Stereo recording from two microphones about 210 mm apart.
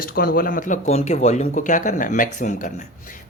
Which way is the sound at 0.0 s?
45° left (ahead or behind).